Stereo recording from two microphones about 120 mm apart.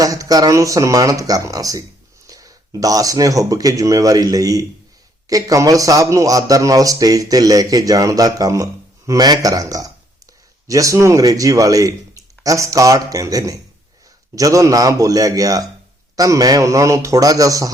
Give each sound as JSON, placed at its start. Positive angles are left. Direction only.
{"t": 0.0, "sound": "a man's voice", "side_deg": -30}